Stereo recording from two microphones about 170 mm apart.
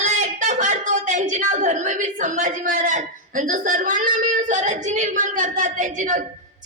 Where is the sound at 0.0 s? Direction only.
45° right (ahead or behind).